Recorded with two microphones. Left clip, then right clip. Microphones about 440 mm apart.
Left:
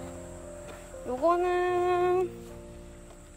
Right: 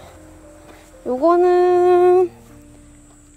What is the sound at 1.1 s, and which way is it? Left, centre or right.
Speech, centre.